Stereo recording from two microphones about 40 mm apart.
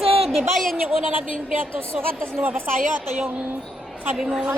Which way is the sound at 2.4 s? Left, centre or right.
Right.